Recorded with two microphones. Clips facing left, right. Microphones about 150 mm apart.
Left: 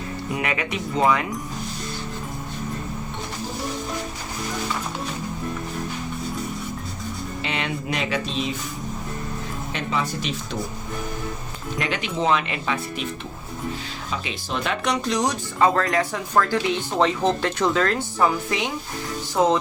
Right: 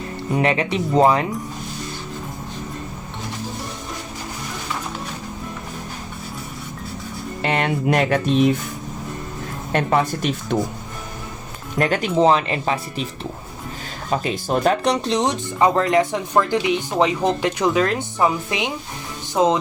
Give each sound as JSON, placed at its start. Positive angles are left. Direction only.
{"t": 0.3, "sound": "speech", "side_deg": -30}
{"t": 7.4, "sound": "speech", "side_deg": -55}
{"t": 9.7, "sound": "speech", "side_deg": -55}
{"t": 11.8, "sound": "speech", "side_deg": -45}
{"t": 14.1, "sound": "speech", "side_deg": -45}